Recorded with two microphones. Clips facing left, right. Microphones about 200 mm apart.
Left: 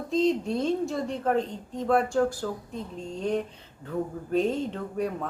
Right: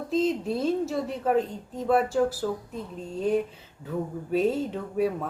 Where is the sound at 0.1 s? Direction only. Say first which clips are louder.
Left 1 dB; 5° right (ahead or behind).